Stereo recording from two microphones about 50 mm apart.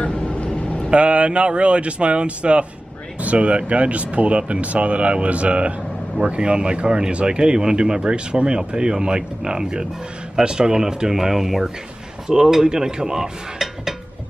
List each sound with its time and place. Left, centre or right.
0.0 s vehicle: left
0.8 s speech: right; by 13.9 s centre